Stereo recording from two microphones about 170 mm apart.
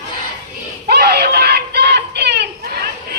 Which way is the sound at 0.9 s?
70° right (ahead or behind).